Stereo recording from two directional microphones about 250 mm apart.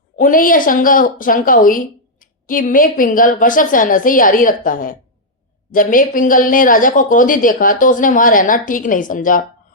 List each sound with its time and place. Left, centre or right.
0.2 s speech: left